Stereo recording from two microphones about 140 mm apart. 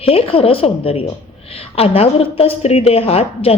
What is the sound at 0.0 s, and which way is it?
A woman's voice, 45° left (ahead or behind).